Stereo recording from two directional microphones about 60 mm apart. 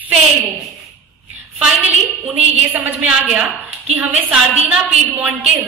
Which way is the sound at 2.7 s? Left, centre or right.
Right.